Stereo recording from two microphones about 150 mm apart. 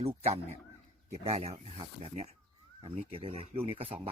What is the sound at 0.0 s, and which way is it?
Speech, 45° right (ahead or behind).